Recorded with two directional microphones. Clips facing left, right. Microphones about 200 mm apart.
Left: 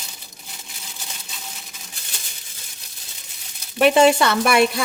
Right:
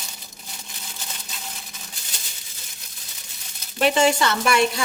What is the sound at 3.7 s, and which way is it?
Speech, 60° left (ahead or behind).